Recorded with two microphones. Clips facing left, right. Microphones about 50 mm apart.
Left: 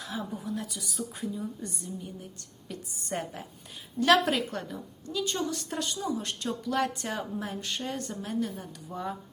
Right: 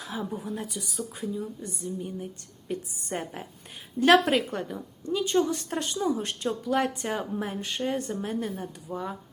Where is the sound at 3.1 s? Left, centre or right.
Centre.